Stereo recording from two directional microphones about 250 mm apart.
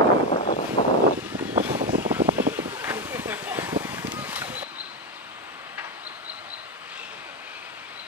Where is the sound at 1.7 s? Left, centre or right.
Right.